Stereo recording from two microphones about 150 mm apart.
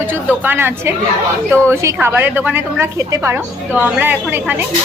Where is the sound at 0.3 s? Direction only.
15° right (ahead or behind).